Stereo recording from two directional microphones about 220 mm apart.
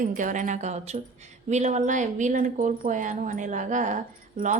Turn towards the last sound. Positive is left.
turn(degrees=-35)  # may be behind; listen again after turning